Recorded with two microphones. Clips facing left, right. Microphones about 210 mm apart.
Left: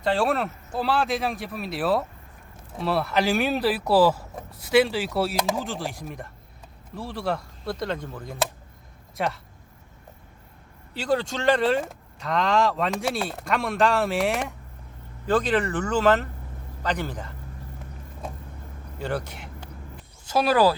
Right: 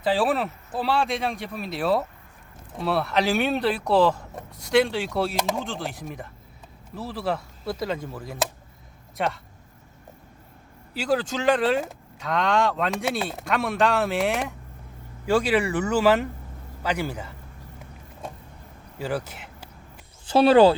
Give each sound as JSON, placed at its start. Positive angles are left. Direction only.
{"t": 0.0, "sound": "speech", "side_deg": 0}
{"t": 10.9, "sound": "speech", "side_deg": -5}
{"t": 18.9, "sound": "a sound", "side_deg": -5}
{"t": 20.2, "sound": "speech", "side_deg": -30}